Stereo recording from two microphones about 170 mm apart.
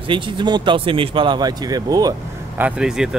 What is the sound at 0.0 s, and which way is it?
Speech, 30° right (ahead or behind).